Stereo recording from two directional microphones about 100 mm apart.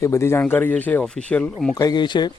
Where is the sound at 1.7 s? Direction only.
40° left (ahead or behind).